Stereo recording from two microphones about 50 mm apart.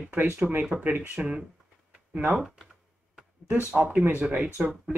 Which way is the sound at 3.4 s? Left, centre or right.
Right.